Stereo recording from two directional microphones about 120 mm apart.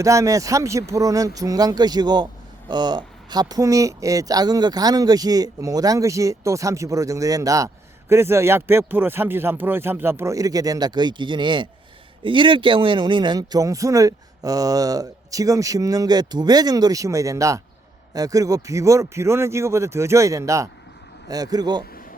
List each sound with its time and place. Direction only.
0.0 s a man's voice: 25° right (ahead or behind)